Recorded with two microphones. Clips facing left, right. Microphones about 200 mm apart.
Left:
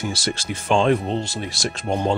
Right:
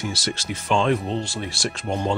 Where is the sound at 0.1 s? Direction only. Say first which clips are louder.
Left 2 dB; 50° left (ahead or behind).